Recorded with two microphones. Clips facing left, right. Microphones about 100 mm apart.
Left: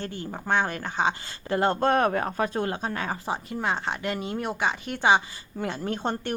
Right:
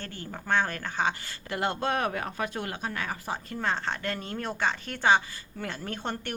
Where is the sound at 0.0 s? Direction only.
20° left (ahead or behind).